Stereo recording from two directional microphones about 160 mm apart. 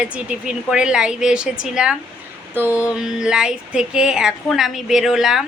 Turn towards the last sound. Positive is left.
turn(degrees=0)  # may be behind; listen again after turning